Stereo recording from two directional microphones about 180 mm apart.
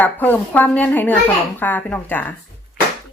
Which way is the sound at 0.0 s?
10° left (ahead or behind).